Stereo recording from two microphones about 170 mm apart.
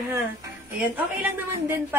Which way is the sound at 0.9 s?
10° right (ahead or behind).